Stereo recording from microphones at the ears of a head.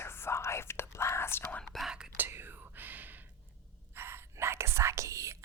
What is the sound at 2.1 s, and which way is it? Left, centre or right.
Whispering, right.